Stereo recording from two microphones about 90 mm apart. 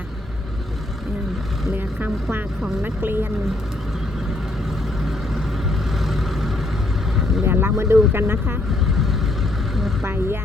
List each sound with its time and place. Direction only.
1.7 s speech: 20° right (ahead or behind)
6.1 s vehicle: centre (ahead or behind)
7.4 s speech: 25° right (ahead or behind)
10.0 s speech: 25° right (ahead or behind)